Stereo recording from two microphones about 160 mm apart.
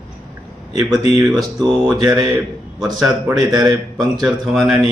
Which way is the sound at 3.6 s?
Centre (ahead or behind).